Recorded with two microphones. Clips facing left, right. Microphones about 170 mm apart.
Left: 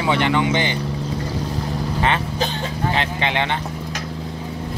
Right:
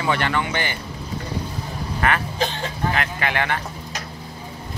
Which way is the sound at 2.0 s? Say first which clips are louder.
Even; 25° left (ahead or behind).